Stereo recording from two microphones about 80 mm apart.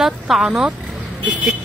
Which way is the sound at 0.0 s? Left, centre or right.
Centre.